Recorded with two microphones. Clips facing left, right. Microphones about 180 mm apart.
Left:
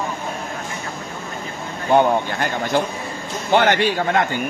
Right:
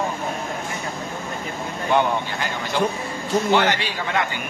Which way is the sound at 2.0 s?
55° left (ahead or behind).